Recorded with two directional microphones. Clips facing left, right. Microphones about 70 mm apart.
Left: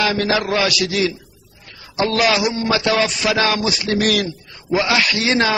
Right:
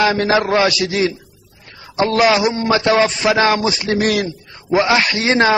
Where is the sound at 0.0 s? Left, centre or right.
Right.